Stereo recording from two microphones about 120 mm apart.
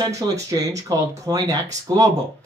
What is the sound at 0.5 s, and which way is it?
Speech, 30° right (ahead or behind).